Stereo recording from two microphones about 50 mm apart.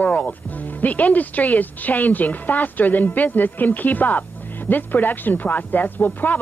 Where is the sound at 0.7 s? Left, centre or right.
Left.